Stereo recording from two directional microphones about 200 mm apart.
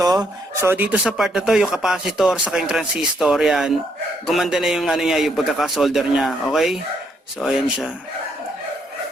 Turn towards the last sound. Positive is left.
turn(degrees=-5)  # may be behind; listen again after turning